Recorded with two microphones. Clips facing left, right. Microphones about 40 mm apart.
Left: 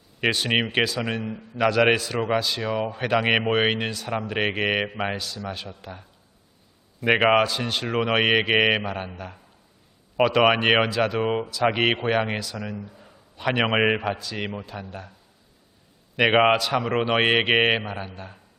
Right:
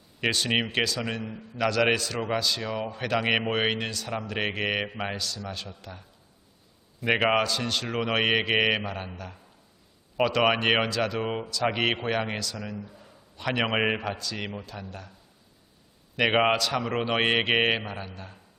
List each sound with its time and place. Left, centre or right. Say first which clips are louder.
0.2 s a man's voice: left 3 dB; centre
16.1 s a man's voice: left 4 dB; centre